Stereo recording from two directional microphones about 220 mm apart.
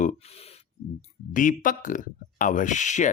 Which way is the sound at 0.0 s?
30° left (ahead or behind).